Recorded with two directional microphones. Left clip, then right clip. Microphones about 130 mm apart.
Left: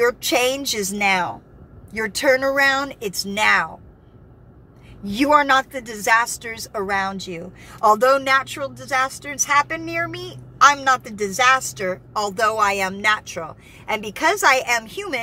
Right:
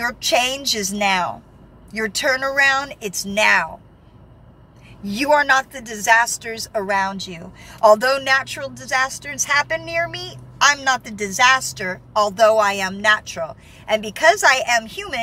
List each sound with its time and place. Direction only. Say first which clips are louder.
0.0 s a woman's voice: left 1 dB; 35° left (ahead or behind)
5.0 s a woman's voice: even; 35° left (ahead or behind)